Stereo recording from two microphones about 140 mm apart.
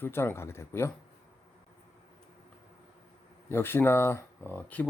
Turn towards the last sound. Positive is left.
turn(degrees=10)  # may be behind; listen again after turning